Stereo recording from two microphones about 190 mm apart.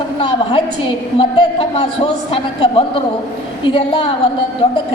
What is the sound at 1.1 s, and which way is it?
A man's voice, 30° left (ahead or behind).